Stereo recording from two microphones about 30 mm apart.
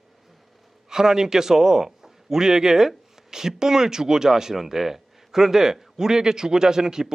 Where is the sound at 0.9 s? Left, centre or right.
Centre.